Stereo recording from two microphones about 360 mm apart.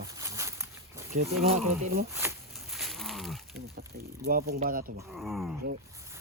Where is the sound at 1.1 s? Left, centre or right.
Centre.